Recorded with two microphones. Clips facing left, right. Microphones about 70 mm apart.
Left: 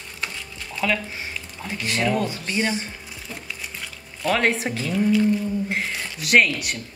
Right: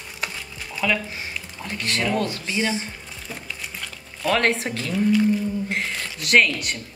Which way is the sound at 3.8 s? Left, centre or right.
Centre.